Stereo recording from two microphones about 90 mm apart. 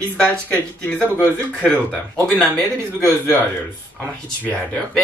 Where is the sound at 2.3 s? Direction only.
15° left (ahead or behind).